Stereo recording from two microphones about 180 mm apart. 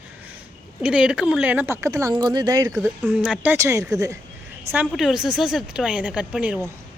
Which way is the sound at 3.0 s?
5° right (ahead or behind).